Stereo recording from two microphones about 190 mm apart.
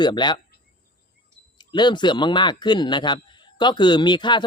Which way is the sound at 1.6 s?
25° left (ahead or behind).